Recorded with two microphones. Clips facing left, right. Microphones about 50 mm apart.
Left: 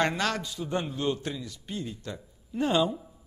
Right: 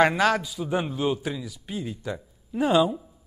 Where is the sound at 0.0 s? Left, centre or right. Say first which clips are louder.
Right 7 dB; centre.